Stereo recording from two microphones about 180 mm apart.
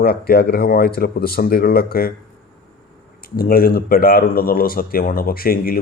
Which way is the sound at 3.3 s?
55° left (ahead or behind).